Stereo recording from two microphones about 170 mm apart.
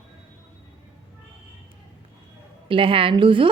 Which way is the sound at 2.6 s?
30° right (ahead or behind).